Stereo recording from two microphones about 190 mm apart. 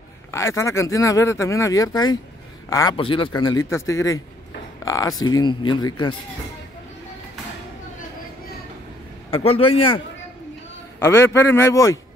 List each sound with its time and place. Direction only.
0.3 s a man's voice: 15° left (ahead or behind)
9.3 s a man's voice: 30° left (ahead or behind)
11.0 s speech: 15° left (ahead or behind)